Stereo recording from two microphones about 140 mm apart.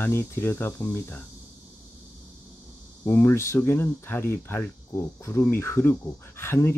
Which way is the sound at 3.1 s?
20° left (ahead or behind).